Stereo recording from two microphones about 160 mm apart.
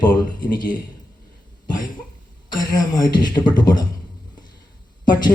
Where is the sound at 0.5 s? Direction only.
25° left (ahead or behind).